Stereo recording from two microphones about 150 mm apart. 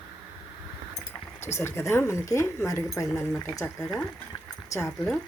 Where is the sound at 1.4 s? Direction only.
15° left (ahead or behind).